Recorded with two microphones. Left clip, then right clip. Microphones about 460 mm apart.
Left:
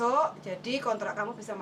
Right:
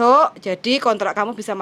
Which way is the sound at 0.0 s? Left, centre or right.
Right.